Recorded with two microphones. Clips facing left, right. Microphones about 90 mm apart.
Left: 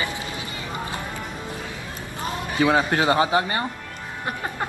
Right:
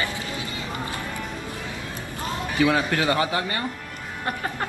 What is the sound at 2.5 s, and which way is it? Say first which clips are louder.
Speech: left 2 dB; 25° left (ahead or behind).